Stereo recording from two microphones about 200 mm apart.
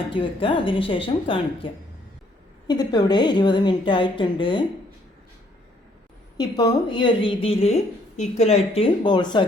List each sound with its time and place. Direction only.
0.1 s a woman's voice: 25° left (ahead or behind)
6.6 s a woman's voice: 20° left (ahead or behind)